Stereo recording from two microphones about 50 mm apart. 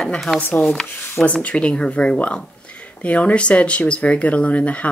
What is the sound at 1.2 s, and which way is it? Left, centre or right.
Speech, left.